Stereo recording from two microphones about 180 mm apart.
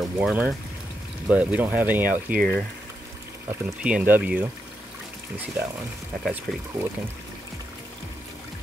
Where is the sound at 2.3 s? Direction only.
55° right (ahead or behind).